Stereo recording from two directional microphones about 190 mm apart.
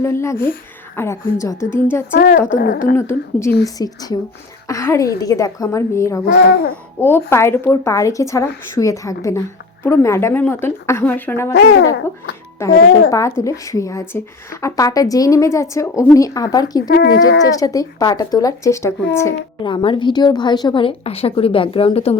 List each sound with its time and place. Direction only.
0.0 s a woman's voice: 15° left (ahead or behind)
2.1 s speech: 50° left (ahead or behind)
2.9 s a woman's voice: 15° left (ahead or behind)
6.2 s speech: 55° left (ahead or behind)
7.3 s a woman's voice: 15° left (ahead or behind)
11.5 s speech: 65° left (ahead or behind)
12.6 s a woman's voice: 15° left (ahead or behind)
16.9 s speech: 60° left (ahead or behind)
17.5 s a woman's voice: 20° left (ahead or behind)
19.6 s a woman's voice: 25° left (ahead or behind)